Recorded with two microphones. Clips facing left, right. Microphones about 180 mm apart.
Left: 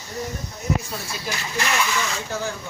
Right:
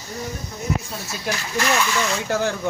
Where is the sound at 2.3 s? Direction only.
70° right (ahead or behind).